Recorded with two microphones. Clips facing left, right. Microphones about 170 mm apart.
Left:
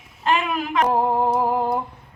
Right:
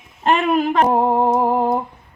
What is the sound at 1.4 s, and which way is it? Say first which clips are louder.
Humming: right 4 dB; 20° right (ahead or behind).